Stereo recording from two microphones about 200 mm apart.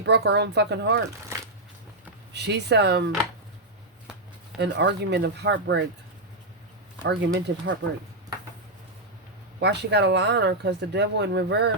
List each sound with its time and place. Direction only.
0.0 s speech: 60° right (ahead or behind)
2.3 s speech: 60° right (ahead or behind)
4.5 s speech: 60° right (ahead or behind)
7.0 s speech: 65° right (ahead or behind)
9.6 s speech: 55° right (ahead or behind)